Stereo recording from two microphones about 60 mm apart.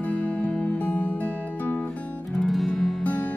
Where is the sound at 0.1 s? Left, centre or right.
Left.